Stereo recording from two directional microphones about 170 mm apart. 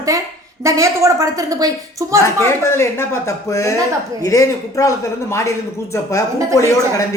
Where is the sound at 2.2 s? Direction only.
15° left (ahead or behind).